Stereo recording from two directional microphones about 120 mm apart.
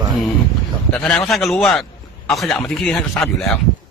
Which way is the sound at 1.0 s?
Centre (ahead or behind).